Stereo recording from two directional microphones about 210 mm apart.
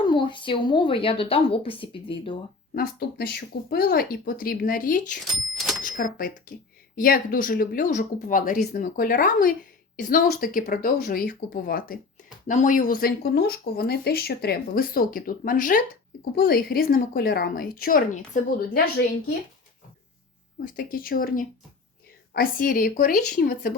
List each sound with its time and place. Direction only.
0.0 s a woman's voice: 20° left (ahead or behind)
2.7 s speech: 50° left (ahead or behind)
5.2 s speech: centre (ahead or behind)
5.8 s speech: 40° left (ahead or behind)
20.6 s speech: 40° left (ahead or behind)